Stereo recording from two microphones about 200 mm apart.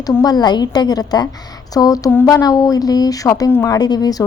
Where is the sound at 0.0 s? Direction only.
20° left (ahead or behind).